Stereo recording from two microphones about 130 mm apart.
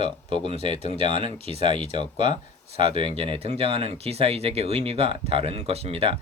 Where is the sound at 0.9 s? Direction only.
45° right (ahead or behind).